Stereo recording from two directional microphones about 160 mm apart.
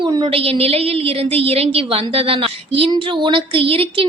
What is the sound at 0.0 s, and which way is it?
A woman's voice, 30° right (ahead or behind).